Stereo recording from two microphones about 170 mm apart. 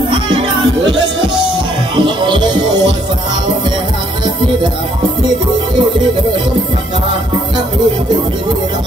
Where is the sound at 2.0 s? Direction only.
25° right (ahead or behind).